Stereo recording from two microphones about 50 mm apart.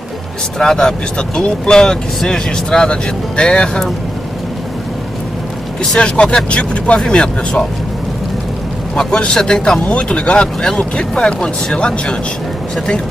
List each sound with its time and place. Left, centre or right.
0.6 s speech: centre
5.9 s speech: centre
8.9 s speech: centre